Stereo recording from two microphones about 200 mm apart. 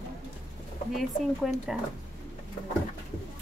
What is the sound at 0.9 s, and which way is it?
Speech, centre (ahead or behind).